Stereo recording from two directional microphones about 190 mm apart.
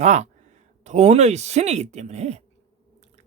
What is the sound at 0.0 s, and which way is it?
Speech, 35° right (ahead or behind).